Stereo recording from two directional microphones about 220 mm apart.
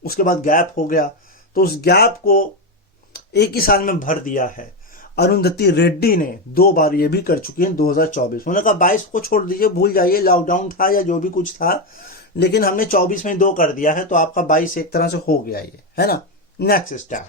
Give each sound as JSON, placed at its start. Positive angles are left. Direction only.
{"t": 0.0, "sound": "speech", "side_deg": 40}